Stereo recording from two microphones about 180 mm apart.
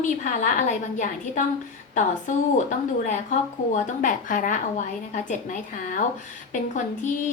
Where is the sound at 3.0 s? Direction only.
45° left (ahead or behind).